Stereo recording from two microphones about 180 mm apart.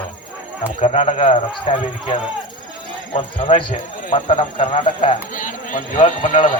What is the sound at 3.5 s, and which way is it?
Speech, 30° left (ahead or behind).